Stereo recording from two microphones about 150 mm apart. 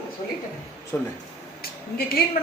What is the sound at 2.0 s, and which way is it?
Speech, 90° left.